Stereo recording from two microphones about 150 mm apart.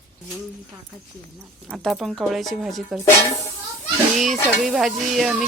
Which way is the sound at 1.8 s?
Centre (ahead or behind).